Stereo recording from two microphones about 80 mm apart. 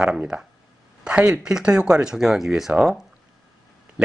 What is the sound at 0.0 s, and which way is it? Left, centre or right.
Speech, centre.